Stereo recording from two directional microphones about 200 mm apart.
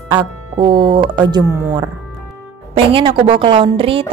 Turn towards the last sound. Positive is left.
turn(degrees=-25)  # may be behind; listen again after turning